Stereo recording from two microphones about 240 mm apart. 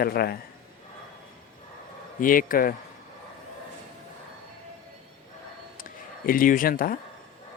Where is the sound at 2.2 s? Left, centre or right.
Left.